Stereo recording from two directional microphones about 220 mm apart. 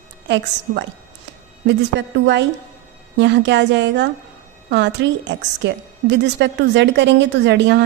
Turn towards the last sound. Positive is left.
turn(degrees=-55)  # may be behind; listen again after turning